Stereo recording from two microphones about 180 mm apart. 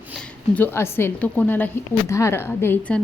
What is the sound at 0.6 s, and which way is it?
A woman's voice, 10° left (ahead or behind).